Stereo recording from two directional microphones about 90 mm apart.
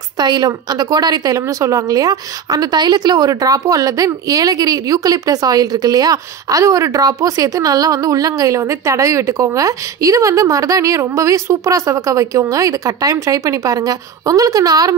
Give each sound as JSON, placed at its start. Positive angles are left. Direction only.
{"t": 0.2, "sound": "speech", "side_deg": -50}